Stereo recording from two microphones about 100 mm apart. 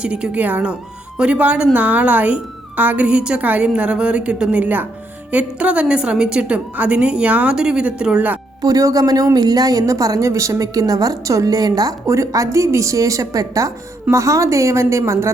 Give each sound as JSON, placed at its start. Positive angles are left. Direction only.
{"t": 0.0, "sound": "speech", "side_deg": -10}
{"t": 8.6, "sound": "speech", "side_deg": -35}